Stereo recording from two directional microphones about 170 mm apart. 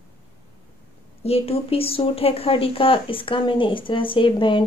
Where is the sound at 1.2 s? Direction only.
35° left (ahead or behind).